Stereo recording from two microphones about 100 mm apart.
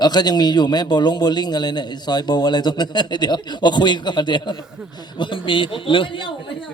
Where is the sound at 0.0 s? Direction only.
45° left (ahead or behind).